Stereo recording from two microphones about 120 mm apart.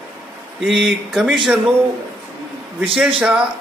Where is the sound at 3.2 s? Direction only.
10° right (ahead or behind).